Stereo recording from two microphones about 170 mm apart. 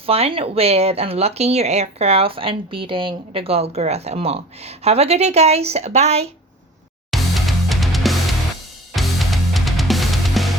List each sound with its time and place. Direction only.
0.0 s speech: 35° right (ahead or behind)
7.1 s music: centre (ahead or behind)